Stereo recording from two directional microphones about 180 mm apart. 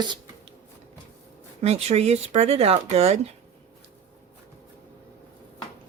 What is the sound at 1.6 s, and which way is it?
Speech, 35° right (ahead or behind).